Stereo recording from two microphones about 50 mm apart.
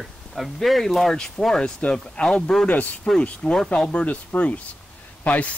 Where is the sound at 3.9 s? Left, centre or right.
Left.